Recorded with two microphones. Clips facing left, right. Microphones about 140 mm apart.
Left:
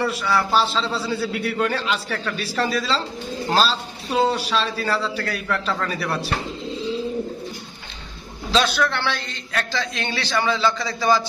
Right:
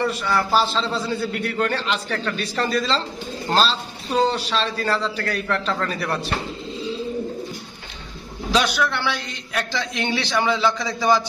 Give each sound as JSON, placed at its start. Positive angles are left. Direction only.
{"t": 0.0, "sound": "a man's voice", "side_deg": 0}
{"t": 8.5, "sound": "a man's voice", "side_deg": -10}